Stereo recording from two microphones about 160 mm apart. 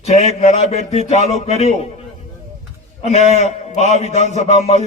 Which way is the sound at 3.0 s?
45° left (ahead or behind).